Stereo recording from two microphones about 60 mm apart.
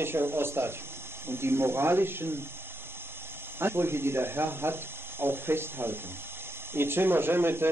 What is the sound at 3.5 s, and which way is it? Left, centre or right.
Speech, right.